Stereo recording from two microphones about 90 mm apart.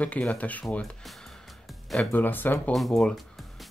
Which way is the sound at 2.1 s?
20° left (ahead or behind).